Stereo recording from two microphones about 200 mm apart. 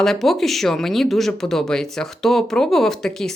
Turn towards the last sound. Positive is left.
turn(degrees=0)  # may be behind; listen again after turning